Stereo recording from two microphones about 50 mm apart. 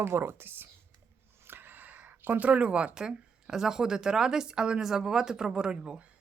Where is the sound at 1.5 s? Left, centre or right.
Right.